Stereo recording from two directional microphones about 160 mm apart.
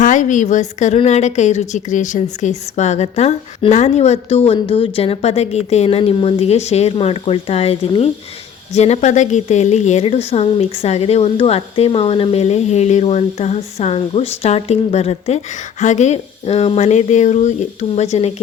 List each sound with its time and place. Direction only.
0.0 s a woman's voice: 50° left (ahead or behind)